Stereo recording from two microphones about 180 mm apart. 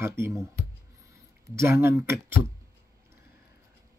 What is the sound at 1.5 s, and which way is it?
Speech, 15° right (ahead or behind).